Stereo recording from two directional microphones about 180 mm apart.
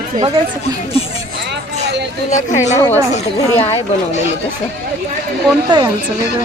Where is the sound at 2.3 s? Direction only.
40° left (ahead or behind).